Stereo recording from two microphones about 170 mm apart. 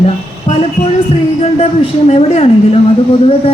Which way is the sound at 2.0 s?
40° left (ahead or behind).